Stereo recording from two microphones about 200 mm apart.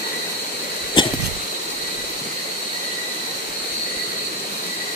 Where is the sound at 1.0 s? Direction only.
25° left (ahead or behind).